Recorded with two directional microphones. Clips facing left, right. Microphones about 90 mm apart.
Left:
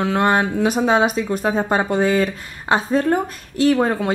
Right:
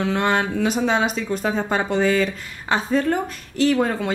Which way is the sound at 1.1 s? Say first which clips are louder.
Left 3 dB; 15° left (ahead or behind).